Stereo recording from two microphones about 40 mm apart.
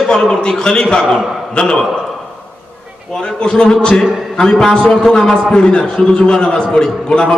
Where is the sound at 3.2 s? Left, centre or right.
Centre.